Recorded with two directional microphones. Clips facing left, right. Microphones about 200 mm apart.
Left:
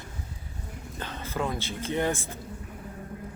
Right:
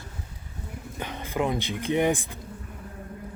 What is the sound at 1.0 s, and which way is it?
Speech, 15° right (ahead or behind).